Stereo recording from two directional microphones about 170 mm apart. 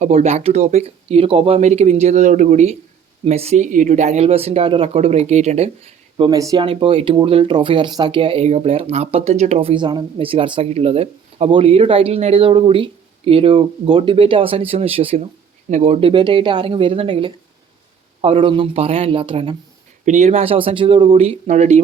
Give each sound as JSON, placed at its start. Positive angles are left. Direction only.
{"t": 0.0, "sound": "speech", "side_deg": -45}
{"t": 6.1, "sound": "speech", "side_deg": -25}
{"t": 20.1, "sound": "speech", "side_deg": -45}